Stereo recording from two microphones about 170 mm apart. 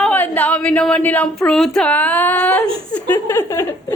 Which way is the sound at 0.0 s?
10° left (ahead or behind).